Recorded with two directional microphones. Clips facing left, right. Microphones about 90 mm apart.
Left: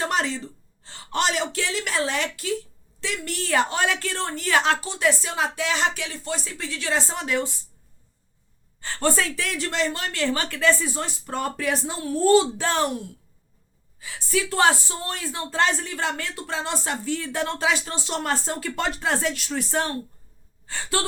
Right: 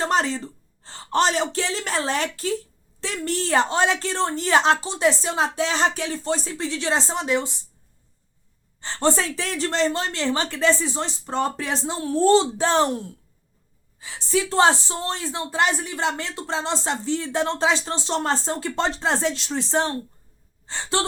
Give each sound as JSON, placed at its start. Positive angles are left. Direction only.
{"t": 0.0, "sound": "speech", "side_deg": -35}
{"t": 8.8, "sound": "a woman's voice", "side_deg": -25}